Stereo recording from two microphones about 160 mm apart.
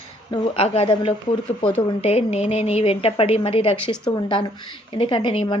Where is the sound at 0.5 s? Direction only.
40° left (ahead or behind).